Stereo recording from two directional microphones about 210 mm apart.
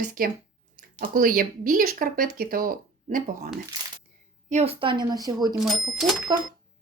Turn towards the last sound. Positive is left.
turn(degrees=-20)  # may be behind; listen again after turning